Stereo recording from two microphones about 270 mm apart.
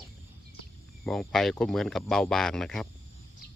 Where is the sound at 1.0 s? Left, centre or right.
Centre.